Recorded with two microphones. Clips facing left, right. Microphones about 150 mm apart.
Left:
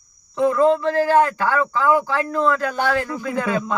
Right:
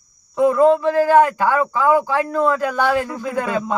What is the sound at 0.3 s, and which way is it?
A man's voice, 15° right (ahead or behind).